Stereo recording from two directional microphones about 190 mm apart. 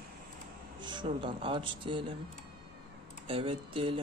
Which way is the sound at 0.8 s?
25° right (ahead or behind).